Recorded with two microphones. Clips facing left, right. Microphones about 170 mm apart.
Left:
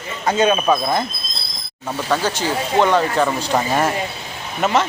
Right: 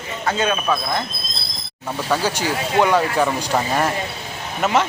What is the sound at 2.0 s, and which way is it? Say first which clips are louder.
Speech: left 1 dB; 10° right (ahead or behind).